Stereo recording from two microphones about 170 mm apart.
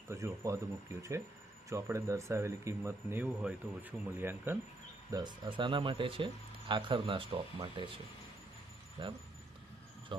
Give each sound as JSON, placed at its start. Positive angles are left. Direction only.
{"t": 0.1, "sound": "speech", "side_deg": -15}
{"t": 1.7, "sound": "speech", "side_deg": -15}
{"t": 5.1, "sound": "speech", "side_deg": -25}
{"t": 9.0, "sound": "speech", "side_deg": -30}